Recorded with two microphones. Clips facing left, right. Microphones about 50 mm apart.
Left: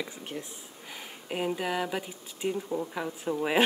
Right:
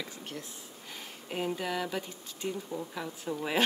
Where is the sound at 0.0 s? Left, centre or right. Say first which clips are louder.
Left 4 dB; centre.